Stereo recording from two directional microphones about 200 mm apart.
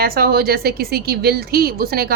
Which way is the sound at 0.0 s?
50° right (ahead or behind).